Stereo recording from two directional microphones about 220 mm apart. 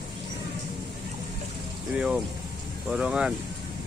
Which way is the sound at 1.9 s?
5° right (ahead or behind).